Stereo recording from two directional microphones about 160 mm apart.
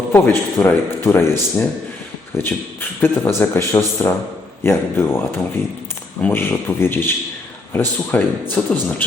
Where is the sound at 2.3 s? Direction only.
15° left (ahead or behind).